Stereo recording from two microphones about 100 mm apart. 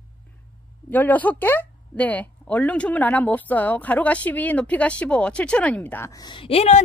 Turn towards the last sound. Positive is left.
turn(degrees=85)